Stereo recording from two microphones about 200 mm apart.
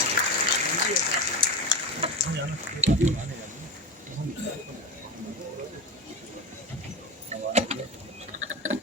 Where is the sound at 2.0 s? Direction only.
30° right (ahead or behind).